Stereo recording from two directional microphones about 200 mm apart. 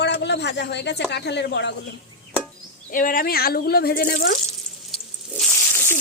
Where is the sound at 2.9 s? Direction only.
45° left (ahead or behind).